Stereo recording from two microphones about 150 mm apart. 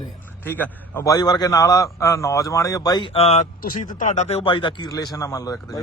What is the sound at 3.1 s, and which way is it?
Speech, 45° left (ahead or behind).